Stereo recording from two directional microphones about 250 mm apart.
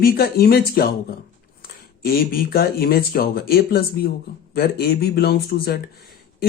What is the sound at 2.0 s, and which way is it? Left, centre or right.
Speech, left.